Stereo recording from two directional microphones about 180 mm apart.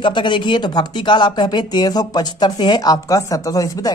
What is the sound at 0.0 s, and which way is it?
Speech, 25° left (ahead or behind).